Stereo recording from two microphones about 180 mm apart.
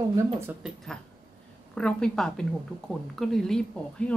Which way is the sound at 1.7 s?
5° left (ahead or behind).